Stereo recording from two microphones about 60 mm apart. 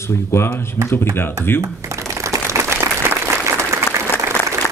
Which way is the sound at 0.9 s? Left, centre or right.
Left.